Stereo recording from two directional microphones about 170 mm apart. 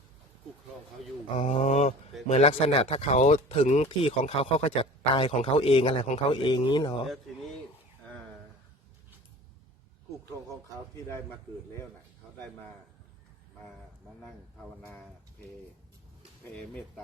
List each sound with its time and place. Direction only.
1.4 s speech: 40° left (ahead or behind)
14.8 s speech: 10° left (ahead or behind)